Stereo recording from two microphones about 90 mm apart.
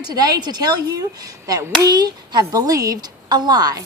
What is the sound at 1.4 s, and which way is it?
A woman's voice, 45° right (ahead or behind).